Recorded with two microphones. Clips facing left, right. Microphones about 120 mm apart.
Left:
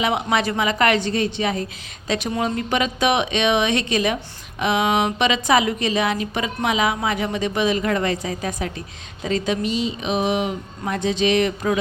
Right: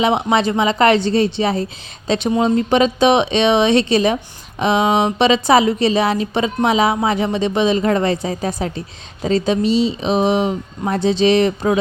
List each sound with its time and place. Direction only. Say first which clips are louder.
0.0 s speech: right 5 dB; 25° right (ahead or behind)